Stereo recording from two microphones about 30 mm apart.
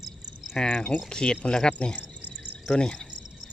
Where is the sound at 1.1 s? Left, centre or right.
Left.